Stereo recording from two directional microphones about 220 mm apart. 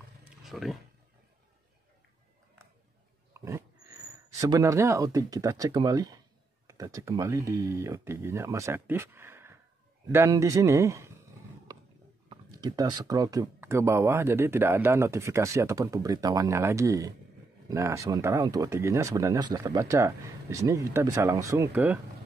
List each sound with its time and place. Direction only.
0.4 s speech: centre (ahead or behind)
3.3 s dog: 10° right (ahead or behind)
4.4 s speech: 15° right (ahead or behind)
11.7 s a sound: 15° right (ahead or behind)
12.3 s speech: 20° right (ahead or behind)